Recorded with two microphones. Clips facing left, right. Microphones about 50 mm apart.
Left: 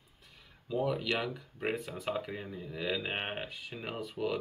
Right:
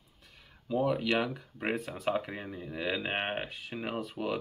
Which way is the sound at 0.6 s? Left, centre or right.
Centre.